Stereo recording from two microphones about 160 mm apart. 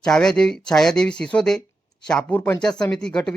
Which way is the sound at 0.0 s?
5° left (ahead or behind).